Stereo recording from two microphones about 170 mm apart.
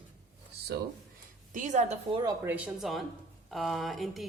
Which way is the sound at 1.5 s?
45° right (ahead or behind).